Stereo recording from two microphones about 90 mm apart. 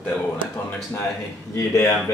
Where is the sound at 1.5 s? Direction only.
30° left (ahead or behind).